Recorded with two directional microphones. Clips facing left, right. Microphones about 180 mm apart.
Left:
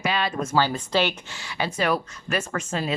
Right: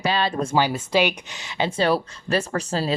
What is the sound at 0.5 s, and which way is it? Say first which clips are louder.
Speech: right 2 dB; 10° right (ahead or behind).